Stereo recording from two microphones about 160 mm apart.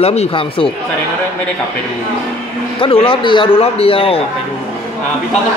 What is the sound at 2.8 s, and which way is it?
Speech, 35° left (ahead or behind).